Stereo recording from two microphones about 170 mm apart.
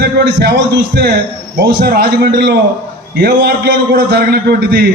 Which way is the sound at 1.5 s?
65° right (ahead or behind).